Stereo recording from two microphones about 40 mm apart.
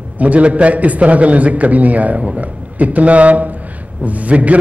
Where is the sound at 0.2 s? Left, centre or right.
Right.